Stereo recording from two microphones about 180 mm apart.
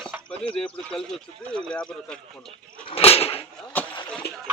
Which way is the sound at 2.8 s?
30° left (ahead or behind).